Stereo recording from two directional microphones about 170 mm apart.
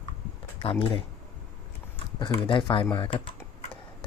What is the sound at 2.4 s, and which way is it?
Speech, 30° left (ahead or behind).